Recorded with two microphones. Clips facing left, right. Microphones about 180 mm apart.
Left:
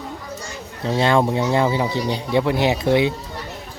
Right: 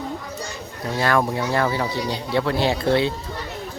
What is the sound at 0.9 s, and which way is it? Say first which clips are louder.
Speech: left 3 dB; 25° left (ahead or behind).